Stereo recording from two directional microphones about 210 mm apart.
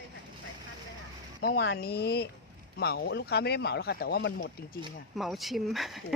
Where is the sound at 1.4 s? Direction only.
55° left (ahead or behind).